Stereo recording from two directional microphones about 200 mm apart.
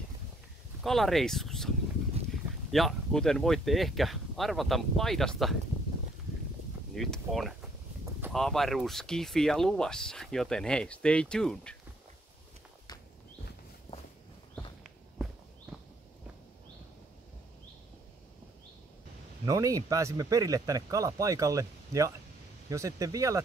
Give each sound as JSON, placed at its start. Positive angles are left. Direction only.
{"t": 0.8, "sound": "speech", "side_deg": 0}
{"t": 2.7, "sound": "speech", "side_deg": 0}
{"t": 7.0, "sound": "speech", "side_deg": 0}
{"t": 15.7, "sound": "walk", "side_deg": -5}
{"t": 19.4, "sound": "speech", "side_deg": -15}